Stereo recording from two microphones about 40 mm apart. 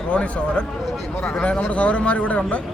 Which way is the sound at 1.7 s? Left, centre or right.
Left.